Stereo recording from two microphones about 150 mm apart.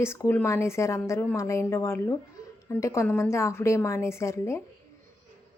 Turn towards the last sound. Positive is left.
turn(degrees=20)  # may be behind; listen again after turning